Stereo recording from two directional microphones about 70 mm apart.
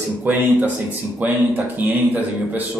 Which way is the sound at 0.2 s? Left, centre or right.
Right.